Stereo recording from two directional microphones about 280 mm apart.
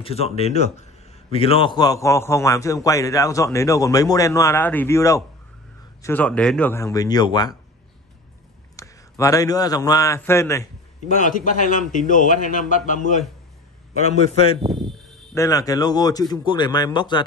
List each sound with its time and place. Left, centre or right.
0.0 s a man's voice: left
8.7 s a man's voice: centre
11.0 s a man's voice: left
14.6 s a sound: centre
15.3 s a man's voice: centre